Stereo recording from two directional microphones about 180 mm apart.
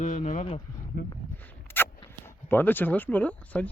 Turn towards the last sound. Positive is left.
turn(degrees=10)  # may be behind; listen again after turning